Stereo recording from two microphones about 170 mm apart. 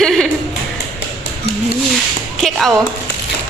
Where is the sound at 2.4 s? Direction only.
Centre (ahead or behind).